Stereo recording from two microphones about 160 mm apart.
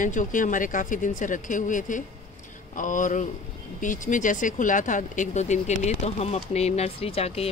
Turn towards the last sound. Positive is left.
turn(degrees=40)  # may be behind; listen again after turning